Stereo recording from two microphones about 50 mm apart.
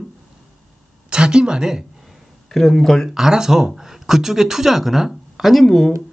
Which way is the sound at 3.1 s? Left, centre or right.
Centre.